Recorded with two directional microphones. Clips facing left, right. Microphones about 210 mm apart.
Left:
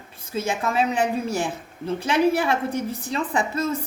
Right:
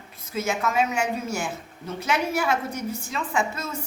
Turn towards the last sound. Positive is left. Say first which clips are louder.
# left 4 dB
turn(degrees=35)  # may be behind; listen again after turning